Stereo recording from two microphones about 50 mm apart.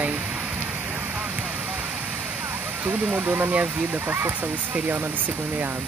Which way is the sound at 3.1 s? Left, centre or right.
Right.